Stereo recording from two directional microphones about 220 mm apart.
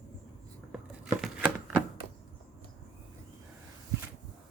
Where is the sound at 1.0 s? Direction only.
5° right (ahead or behind).